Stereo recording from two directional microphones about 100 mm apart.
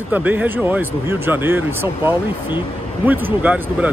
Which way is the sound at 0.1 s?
15° right (ahead or behind).